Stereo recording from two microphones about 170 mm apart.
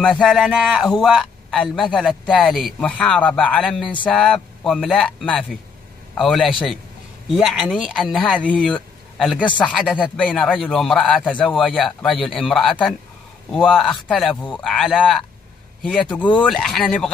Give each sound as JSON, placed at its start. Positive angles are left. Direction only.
{"t": 0.0, "sound": "a man's voice", "side_deg": 5}